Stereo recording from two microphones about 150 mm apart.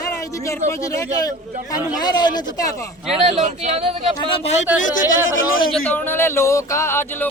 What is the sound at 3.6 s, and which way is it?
Speech, 40° right (ahead or behind).